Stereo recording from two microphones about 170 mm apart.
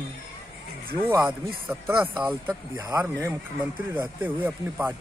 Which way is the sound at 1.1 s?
10° right (ahead or behind).